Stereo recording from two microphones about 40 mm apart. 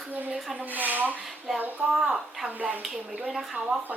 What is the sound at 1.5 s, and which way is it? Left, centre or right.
A woman's voice, centre.